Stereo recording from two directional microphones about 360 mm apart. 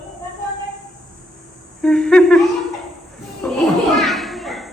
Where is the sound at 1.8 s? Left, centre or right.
Centre.